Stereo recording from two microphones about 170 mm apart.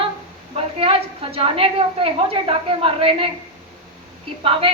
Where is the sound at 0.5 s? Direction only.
35° right (ahead or behind).